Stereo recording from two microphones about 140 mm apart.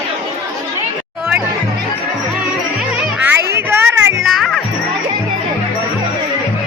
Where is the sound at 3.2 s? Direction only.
15° right (ahead or behind).